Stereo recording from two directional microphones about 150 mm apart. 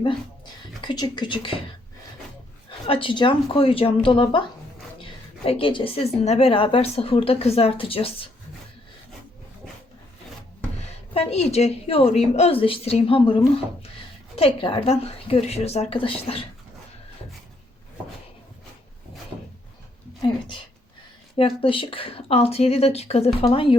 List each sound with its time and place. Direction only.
0.8 s speech: 30° left (ahead or behind)
2.6 s a woman's voice: 40° left (ahead or behind)
5.5 s a woman's voice: 35° left (ahead or behind)
11.1 s a woman's voice: 40° left (ahead or behind)
21.3 s a woman's voice: 35° left (ahead or behind)